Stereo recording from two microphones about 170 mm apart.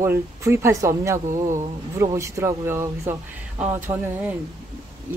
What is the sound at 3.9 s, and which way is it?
Speech, 30° right (ahead or behind).